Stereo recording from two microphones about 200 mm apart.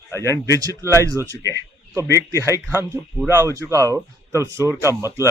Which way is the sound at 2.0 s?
15° left (ahead or behind).